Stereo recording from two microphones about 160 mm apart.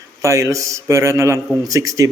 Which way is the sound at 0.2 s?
20° right (ahead or behind).